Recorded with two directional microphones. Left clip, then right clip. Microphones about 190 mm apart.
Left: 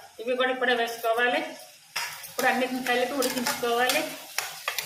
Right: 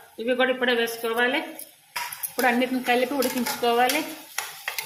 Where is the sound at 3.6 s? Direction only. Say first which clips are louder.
Right 5 dB; 40° right (ahead or behind).